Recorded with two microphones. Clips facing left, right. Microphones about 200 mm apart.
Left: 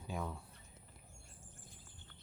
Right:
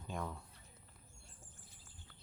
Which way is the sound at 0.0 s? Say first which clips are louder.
Left 1 dB; 5° left (ahead or behind).